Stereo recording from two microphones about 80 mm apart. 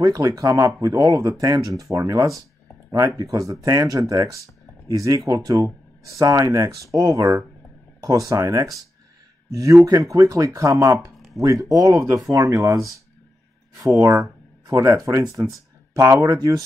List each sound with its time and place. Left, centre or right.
0.0 s speech: right